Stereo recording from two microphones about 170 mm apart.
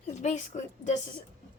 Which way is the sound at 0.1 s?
45° left (ahead or behind).